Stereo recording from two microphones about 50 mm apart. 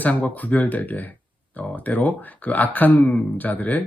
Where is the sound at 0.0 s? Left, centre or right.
Left.